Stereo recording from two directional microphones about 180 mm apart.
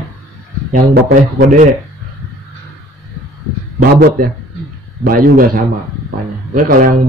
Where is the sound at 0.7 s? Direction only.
60° right (ahead or behind).